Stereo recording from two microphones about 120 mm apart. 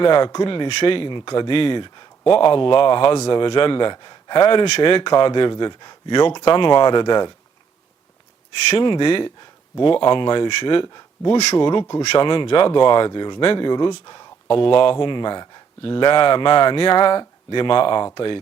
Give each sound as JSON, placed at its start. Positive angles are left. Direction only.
{"t": 0.0, "sound": "speech", "side_deg": 40}
{"t": 8.7, "sound": "speech", "side_deg": 40}